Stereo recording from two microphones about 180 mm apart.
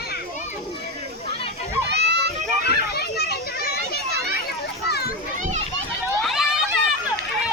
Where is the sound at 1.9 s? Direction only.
70° right (ahead or behind).